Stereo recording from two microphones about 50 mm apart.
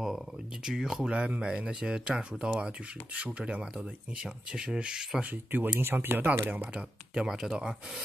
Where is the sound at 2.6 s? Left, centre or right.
Right.